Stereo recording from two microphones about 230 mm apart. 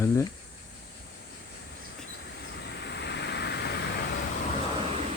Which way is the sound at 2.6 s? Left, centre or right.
Left.